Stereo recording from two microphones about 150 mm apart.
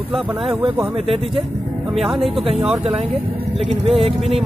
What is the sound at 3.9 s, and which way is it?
Speech, 40° right (ahead or behind).